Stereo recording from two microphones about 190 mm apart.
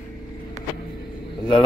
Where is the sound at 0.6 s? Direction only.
35° right (ahead or behind).